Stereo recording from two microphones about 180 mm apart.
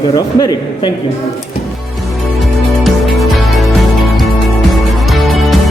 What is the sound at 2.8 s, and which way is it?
Music, centre (ahead or behind).